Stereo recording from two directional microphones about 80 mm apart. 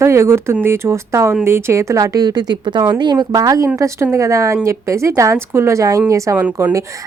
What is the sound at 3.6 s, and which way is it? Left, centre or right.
A woman's voice, right.